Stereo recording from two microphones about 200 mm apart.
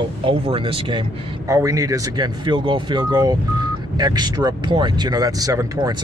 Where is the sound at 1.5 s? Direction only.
15° right (ahead or behind).